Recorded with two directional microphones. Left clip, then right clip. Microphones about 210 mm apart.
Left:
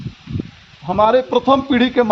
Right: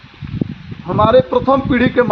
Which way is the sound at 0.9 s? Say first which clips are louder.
Right 2 dB; 50° left (ahead or behind).